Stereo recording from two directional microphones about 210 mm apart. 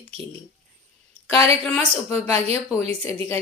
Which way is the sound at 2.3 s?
30° right (ahead or behind).